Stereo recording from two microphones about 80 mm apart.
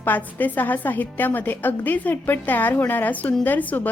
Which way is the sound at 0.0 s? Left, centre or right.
Left.